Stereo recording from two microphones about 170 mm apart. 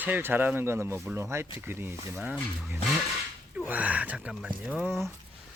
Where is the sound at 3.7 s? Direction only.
10° right (ahead or behind).